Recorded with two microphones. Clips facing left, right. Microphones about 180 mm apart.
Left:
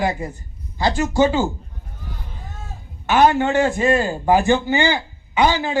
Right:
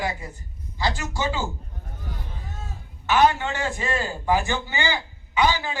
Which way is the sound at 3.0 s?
50° left (ahead or behind).